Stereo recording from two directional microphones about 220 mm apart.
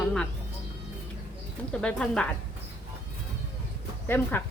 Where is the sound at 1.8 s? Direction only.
5° left (ahead or behind).